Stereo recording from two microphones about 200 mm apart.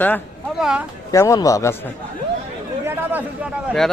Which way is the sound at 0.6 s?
5° right (ahead or behind).